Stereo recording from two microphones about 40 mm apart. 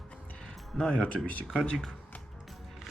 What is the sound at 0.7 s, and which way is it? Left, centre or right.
Speech, centre.